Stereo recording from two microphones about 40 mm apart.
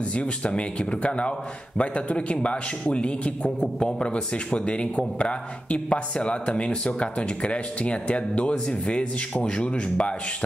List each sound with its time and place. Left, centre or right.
0.1 s speech: left